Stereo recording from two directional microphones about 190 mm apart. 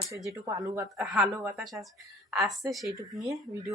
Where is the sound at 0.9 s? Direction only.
Centre (ahead or behind).